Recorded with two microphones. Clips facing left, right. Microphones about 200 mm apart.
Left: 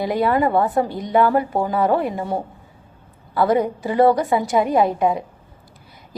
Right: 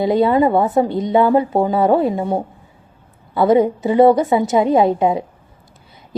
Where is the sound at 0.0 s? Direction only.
25° right (ahead or behind).